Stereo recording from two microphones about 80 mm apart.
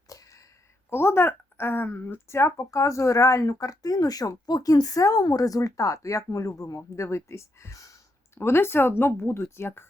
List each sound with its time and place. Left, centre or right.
0.1 s a sound: left
0.9 s a woman's voice: left
8.4 s speech: left